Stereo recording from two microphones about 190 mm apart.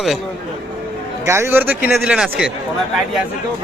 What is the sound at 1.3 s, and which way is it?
A man's voice, 15° right (ahead or behind).